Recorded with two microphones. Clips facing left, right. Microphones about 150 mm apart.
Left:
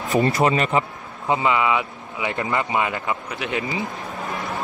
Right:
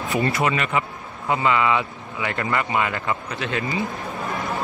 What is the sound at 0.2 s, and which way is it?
Speech, 25° left (ahead or behind).